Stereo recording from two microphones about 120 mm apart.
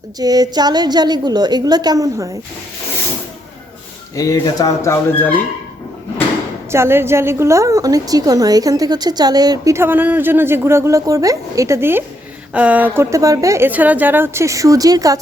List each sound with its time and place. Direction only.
0.2 s a woman's voice: 30° right (ahead or behind)
4.1 s speech: 30° left (ahead or behind)
6.7 s a woman's voice: 20° right (ahead or behind)
9.7 s a woman's voice: 15° right (ahead or behind)
13.7 s a woman's voice: 15° right (ahead or behind); by 15.2 s 30° right (ahead or behind)